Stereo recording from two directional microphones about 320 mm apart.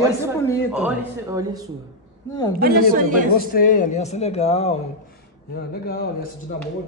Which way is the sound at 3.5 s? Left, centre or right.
Left.